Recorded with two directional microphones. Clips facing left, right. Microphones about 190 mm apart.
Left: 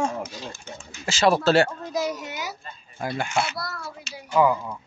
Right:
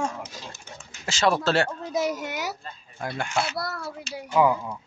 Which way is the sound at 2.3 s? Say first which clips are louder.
Right 2 dB; 70° right (ahead or behind).